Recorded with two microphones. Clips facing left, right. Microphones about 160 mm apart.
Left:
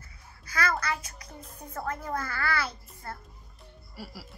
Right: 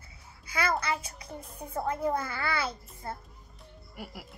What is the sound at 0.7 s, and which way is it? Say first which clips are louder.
Speech: right 1 dB; 30° right (ahead or behind).